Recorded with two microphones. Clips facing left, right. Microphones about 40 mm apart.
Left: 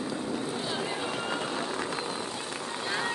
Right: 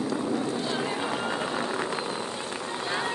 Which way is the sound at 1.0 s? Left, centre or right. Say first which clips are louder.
Right 3 dB; right.